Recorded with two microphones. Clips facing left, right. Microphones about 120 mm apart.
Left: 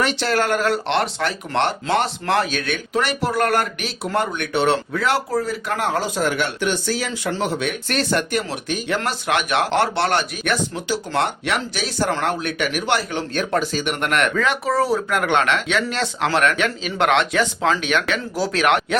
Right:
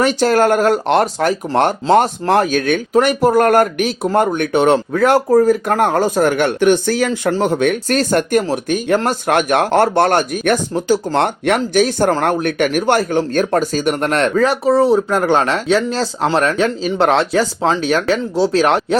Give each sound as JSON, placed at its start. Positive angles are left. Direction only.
{"t": 0.0, "sound": "speech", "side_deg": -45}